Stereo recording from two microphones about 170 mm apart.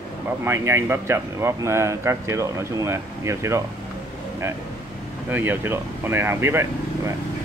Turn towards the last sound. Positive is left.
turn(degrees=-15)  # may be behind; listen again after turning